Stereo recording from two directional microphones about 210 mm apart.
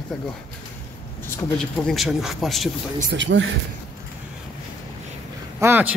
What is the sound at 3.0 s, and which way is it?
Speech, 55° right (ahead or behind).